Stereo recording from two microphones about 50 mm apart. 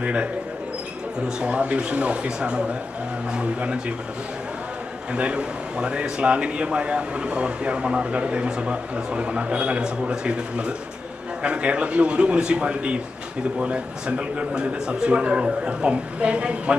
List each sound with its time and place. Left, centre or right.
0.0 s speech: right
1.4 s speech: right
5.1 s speech: right